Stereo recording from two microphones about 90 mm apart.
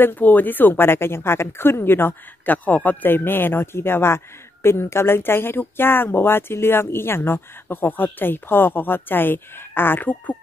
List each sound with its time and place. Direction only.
0.0 s speech: 20° left (ahead or behind)